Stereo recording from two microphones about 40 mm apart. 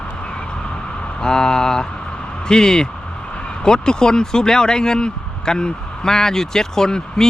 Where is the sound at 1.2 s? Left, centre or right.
Centre.